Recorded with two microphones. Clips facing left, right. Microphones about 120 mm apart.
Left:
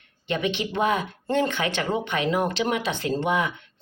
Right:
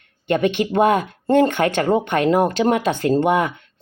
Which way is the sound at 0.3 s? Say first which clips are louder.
Right 8 dB; 50° right (ahead or behind).